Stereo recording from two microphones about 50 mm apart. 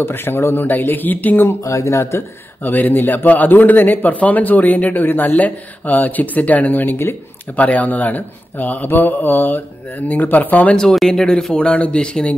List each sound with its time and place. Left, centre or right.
0.0 s speech: left
0.7 s a man's voice: left
1.5 s speech: left
2.6 s a man's voice: left
10.7 s speech: centre